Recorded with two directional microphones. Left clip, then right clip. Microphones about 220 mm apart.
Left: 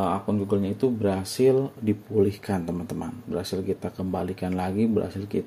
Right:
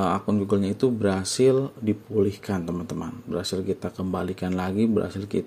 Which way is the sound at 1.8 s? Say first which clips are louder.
Left 1 dB; 5° right (ahead or behind).